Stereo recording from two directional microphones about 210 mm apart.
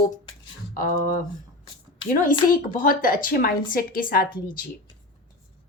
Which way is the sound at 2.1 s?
40° left (ahead or behind).